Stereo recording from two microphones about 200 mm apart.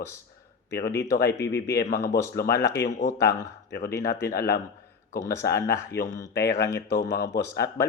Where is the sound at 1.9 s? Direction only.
15° left (ahead or behind).